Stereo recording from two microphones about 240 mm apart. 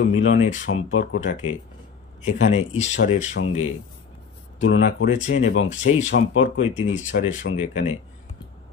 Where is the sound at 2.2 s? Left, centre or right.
Left.